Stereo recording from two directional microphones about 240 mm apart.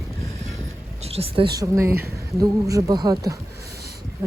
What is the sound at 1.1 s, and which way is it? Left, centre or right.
A woman's voice, right.